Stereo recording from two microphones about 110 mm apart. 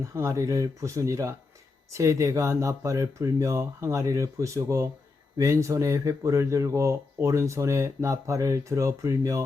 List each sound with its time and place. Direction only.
0.0 s speech: 25° right (ahead or behind)